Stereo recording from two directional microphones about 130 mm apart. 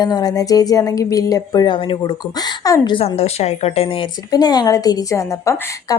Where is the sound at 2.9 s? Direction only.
50° left (ahead or behind).